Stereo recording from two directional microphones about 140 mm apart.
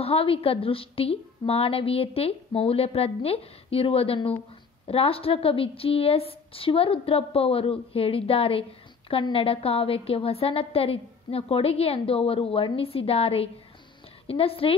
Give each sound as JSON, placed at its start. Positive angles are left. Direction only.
{"t": 0.0, "sound": "a woman's voice", "side_deg": 40}